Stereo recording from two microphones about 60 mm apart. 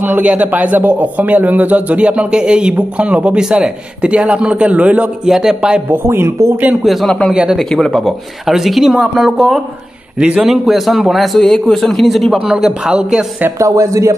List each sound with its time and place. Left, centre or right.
0.0 s a man's voice: right
5.2 s speech: centre
6.0 s speech: right
6.8 s a man's voice: centre
7.1 s a man's voice: centre
8.0 s a man's voice: centre
12.4 s speech: centre
13.6 s speech: right